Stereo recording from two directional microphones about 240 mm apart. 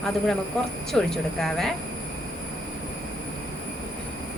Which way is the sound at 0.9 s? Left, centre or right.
Centre.